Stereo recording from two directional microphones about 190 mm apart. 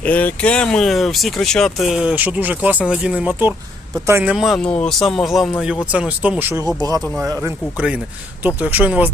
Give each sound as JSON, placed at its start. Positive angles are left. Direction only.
{"t": 0.0, "sound": "speech", "side_deg": 10}